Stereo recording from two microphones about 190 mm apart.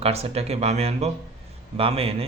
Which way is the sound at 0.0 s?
35° right (ahead or behind).